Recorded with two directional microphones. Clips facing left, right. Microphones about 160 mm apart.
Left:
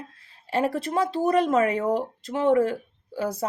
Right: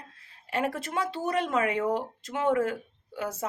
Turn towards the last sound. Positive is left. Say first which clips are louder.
# left 5 dB
turn(degrees=35)  # may be behind; listen again after turning